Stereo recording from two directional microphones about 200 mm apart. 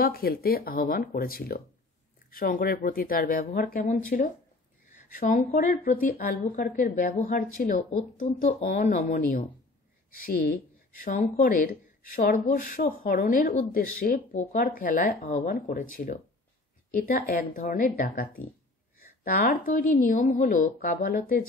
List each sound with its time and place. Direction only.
0.0 s a woman's voice: 50° left (ahead or behind)
11.0 s speech: 40° left (ahead or behind)